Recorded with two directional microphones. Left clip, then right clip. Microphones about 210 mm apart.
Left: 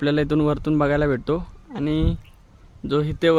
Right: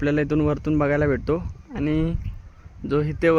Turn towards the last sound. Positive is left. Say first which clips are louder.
# left 1 dB
turn(degrees=0)  # may be behind; listen again after turning